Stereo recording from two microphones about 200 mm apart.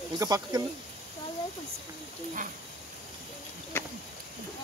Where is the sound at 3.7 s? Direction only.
10° left (ahead or behind).